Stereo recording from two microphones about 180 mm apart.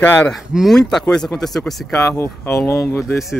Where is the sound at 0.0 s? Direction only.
10° left (ahead or behind).